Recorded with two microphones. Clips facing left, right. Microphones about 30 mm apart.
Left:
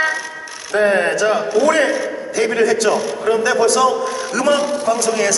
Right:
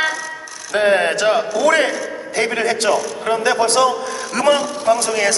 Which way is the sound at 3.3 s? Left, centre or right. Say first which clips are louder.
Left 2 dB; right.